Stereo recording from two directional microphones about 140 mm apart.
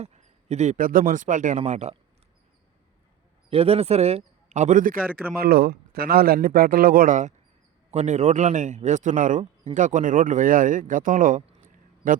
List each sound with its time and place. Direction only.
0.0 s a man's voice: 50° right (ahead or behind)
3.5 s a man's voice: 45° right (ahead or behind); by 4.9 s 70° right (ahead or behind)
5.4 s a man's voice: 90° right